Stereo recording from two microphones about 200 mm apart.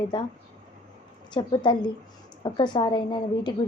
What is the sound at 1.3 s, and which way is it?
A woman's voice, 25° left (ahead or behind).